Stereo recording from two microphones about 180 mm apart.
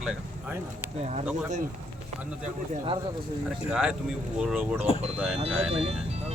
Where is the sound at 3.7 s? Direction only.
5° right (ahead or behind).